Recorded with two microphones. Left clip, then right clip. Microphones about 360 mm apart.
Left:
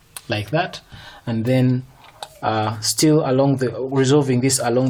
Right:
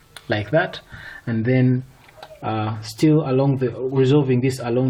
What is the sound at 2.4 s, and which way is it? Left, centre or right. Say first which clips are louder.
Speech: left 5 dB; left.